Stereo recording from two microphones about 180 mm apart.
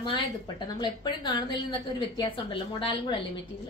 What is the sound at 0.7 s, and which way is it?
A woman's voice, 25° left (ahead or behind).